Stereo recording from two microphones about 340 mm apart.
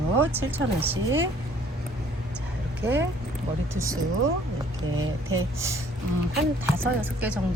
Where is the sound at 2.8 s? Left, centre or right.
Centre.